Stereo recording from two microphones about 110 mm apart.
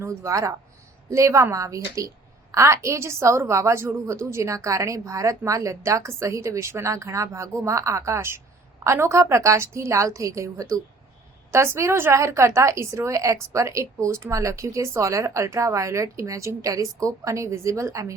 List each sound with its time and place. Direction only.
0.0 s a woman's voice: 25° right (ahead or behind)